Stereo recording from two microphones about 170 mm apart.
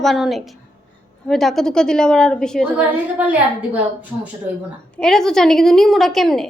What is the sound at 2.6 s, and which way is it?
Speech, 10° right (ahead or behind).